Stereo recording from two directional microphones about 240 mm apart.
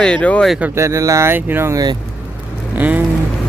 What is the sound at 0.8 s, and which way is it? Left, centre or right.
Speech, centre.